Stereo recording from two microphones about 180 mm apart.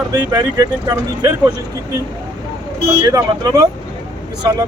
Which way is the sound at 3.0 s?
20° right (ahead or behind).